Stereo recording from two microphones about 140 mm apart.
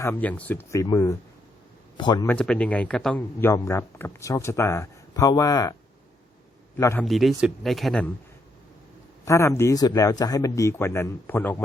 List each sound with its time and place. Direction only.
0.0 s speech: 15° left (ahead or behind); by 2.2 s 30° left (ahead or behind)
2.2 s speech: 10° left (ahead or behind)
3.2 s speech: 20° left (ahead or behind)
6.7 s a man's voice: 20° left (ahead or behind)
7.0 s speech: centre (ahead or behind)
9.2 s speech: 20° left (ahead or behind)